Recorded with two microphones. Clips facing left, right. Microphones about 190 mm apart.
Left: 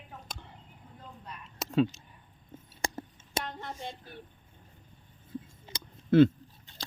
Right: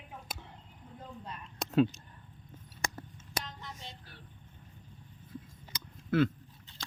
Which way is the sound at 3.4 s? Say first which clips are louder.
Left 7 dB; 60° left (ahead or behind).